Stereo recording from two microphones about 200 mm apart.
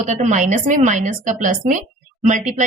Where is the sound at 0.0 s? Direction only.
35° right (ahead or behind).